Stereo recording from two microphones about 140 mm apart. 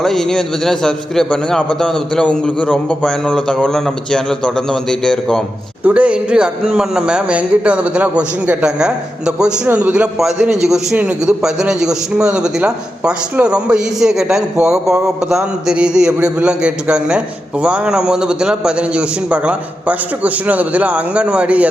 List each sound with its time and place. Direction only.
0.0 s a man's voice: centre (ahead or behind)
5.8 s a man's voice: 10° right (ahead or behind)